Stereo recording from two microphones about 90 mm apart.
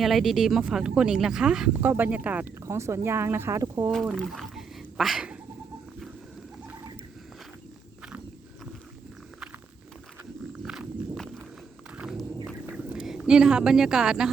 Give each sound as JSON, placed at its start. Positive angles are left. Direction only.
{"t": 0.0, "sound": "speech", "side_deg": -5}
{"t": 1.7, "sound": "speech", "side_deg": -20}
{"t": 2.6, "sound": "speech", "side_deg": -30}
{"t": 3.9, "sound": "a sound", "side_deg": 0}
{"t": 10.6, "sound": "walk", "side_deg": -5}
{"t": 11.9, "sound": "a sound", "side_deg": -5}